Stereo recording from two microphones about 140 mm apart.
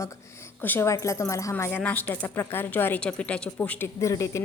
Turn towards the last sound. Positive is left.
turn(degrees=20)  # may be behind; listen again after turning